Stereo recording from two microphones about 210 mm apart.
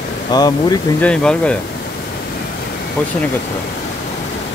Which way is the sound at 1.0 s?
5° left (ahead or behind).